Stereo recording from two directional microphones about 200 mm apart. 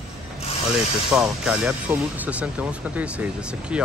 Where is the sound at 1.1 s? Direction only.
5° right (ahead or behind).